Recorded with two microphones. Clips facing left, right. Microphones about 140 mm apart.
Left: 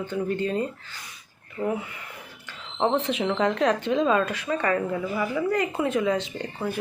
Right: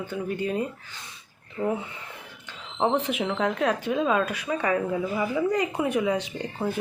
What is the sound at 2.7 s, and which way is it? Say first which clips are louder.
Speech: left 1 dB; 10° right (ahead or behind).